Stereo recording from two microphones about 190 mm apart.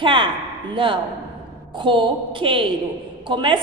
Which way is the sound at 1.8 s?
25° right (ahead or behind).